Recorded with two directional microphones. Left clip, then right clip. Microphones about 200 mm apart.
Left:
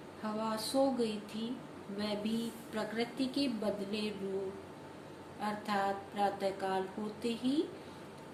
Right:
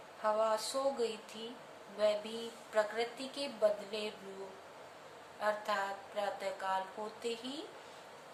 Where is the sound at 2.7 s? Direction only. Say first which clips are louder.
Right 3 dB; 10° right (ahead or behind).